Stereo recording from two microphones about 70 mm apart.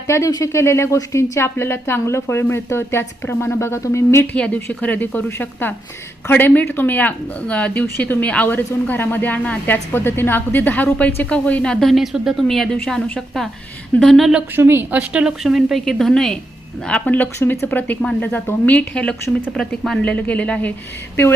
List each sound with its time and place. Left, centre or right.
0.1 s speech: left
4.4 s a woman's voice: centre
9.9 s a woman's voice: left; by 11.9 s centre
11.9 s a woman's voice: centre
14.2 s a woman's voice: centre
14.5 s speech: right; by 15.4 s centre
15.4 s a woman's voice: centre
16.8 s a woman's voice: left
19.5 s a woman's voice: centre
20.0 s a woman's voice: left